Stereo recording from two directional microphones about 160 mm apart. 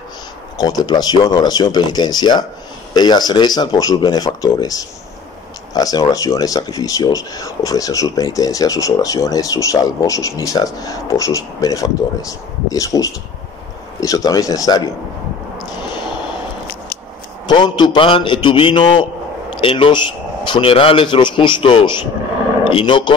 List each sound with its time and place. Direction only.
0.6 s speech: 25° left (ahead or behind)
17.5 s speech: 25° left (ahead or behind)